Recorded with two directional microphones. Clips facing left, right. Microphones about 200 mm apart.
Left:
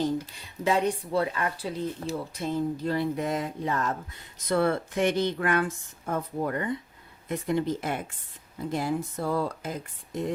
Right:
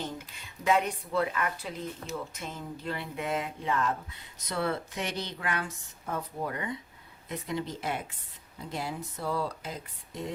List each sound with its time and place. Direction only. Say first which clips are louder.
0.0 s speech: left 10 dB; 35° left (ahead or behind)
4.4 s a woman's voice: left 7 dB; 50° left (ahead or behind)